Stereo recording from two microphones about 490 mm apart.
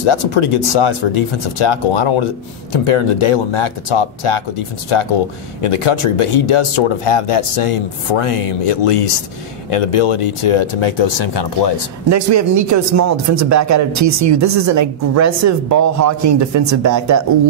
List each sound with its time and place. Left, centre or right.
0.0 s speech: left
12.1 s speech: right